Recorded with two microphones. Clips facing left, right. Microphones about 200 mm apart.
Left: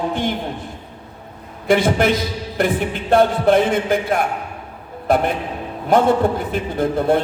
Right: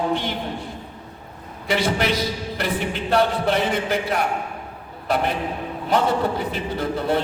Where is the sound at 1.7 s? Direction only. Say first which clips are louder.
Left 6 dB; 50° left (ahead or behind).